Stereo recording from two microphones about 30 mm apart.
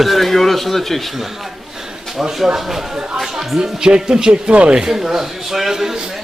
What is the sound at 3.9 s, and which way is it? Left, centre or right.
Speech, right.